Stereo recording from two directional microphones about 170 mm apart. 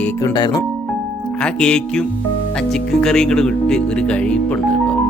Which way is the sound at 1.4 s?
5° left (ahead or behind).